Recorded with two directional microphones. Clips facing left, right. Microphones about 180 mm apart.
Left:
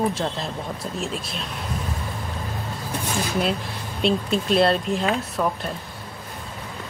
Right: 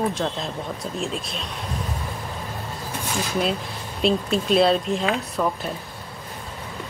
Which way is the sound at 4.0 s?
Centre (ahead or behind).